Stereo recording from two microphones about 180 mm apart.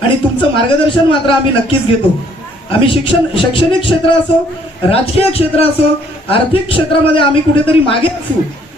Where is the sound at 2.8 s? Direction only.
30° left (ahead or behind).